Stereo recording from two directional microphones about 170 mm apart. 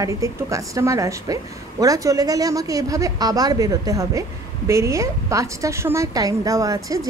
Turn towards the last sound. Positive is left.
turn(degrees=-20)  # may be behind; listen again after turning